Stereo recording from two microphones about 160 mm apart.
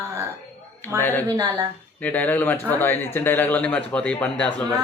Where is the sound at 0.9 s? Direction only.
15° left (ahead or behind).